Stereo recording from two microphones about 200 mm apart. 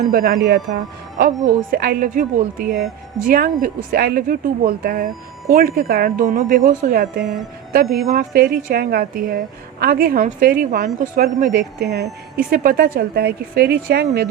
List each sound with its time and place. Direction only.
0.1 s a woman's voice: 45° right (ahead or behind)